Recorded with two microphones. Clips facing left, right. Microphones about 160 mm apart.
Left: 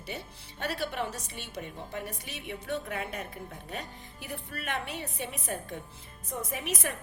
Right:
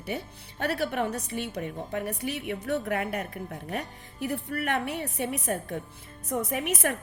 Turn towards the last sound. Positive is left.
turn(degrees=-70)  # may be behind; listen again after turning